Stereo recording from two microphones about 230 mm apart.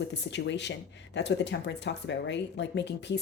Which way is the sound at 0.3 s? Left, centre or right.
Left.